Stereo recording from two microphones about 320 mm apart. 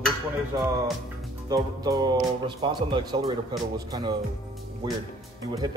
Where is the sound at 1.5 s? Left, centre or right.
Centre.